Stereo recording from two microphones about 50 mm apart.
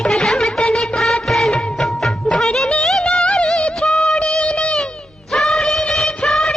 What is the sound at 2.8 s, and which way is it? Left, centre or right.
Music, centre.